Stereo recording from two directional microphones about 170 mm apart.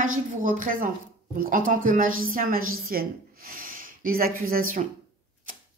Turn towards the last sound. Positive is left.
turn(degrees=-60)  # may be behind; listen again after turning